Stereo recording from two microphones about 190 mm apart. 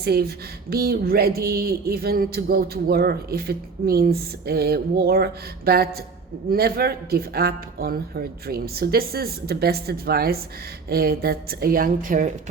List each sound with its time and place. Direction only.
0.0 s speech: 55° right (ahead or behind)